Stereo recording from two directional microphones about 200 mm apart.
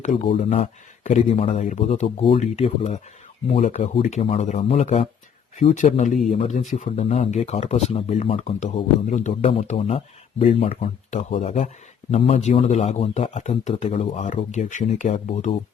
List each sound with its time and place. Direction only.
0.0 s speech: 35° left (ahead or behind)